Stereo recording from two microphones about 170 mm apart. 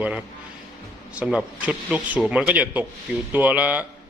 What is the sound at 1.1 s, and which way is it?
Speech, 5° right (ahead or behind).